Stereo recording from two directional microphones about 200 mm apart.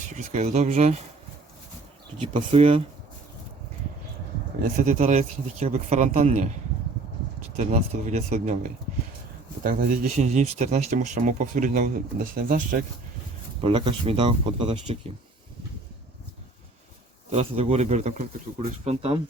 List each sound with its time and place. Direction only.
0.3 s speech: 35° right (ahead or behind)
2.2 s speech: 30° right (ahead or behind)
4.8 s speech: 35° right (ahead or behind)
7.5 s speech: 35° right (ahead or behind)
9.6 s speech: 45° right (ahead or behind)
13.6 s speech: 30° right (ahead or behind)
17.2 s speech: 30° right (ahead or behind)